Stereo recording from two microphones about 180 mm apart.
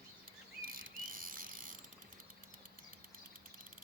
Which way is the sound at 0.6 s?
50° right (ahead or behind).